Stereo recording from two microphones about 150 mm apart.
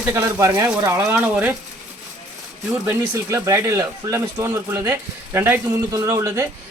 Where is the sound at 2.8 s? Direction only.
15° right (ahead or behind).